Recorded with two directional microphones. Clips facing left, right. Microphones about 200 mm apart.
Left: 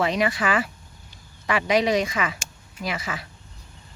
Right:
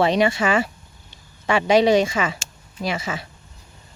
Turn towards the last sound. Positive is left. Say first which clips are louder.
# right 4 dB
turn(degrees=-25)  # may be behind; listen again after turning